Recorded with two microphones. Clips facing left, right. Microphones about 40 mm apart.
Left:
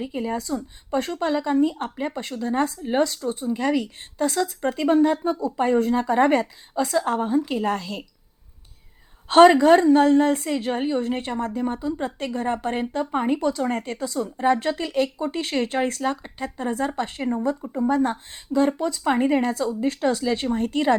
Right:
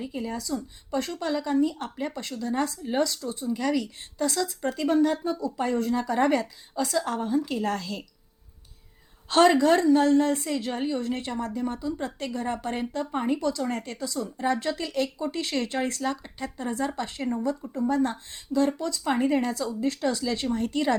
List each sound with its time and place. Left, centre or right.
0.0 s speech: left
6.4 s a woman's voice: centre
6.9 s speech: left
9.3 s speech: left